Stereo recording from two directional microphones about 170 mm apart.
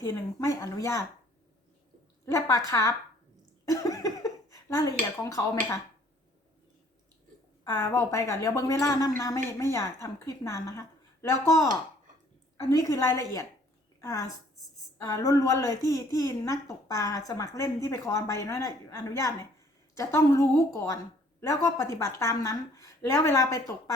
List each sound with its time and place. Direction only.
0.0 s a woman's voice: 20° left (ahead or behind)
2.2 s a woman's voice: 20° left (ahead or behind)
3.7 s a sound: 20° left (ahead or behind)
5.2 s a woman's voice: 20° left (ahead or behind)
7.6 s a woman's voice: 20° left (ahead or behind)